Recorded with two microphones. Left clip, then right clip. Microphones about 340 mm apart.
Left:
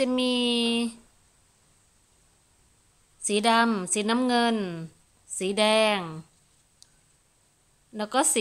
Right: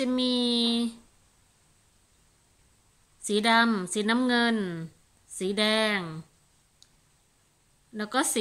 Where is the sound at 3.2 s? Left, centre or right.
Centre.